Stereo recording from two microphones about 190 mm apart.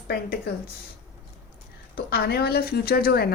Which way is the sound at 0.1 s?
55° left (ahead or behind).